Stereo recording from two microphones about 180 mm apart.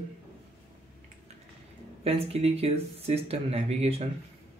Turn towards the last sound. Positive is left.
turn(degrees=-35)  # may be behind; listen again after turning